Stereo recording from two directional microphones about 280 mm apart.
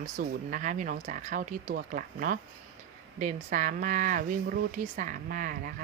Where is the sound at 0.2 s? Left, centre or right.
Right.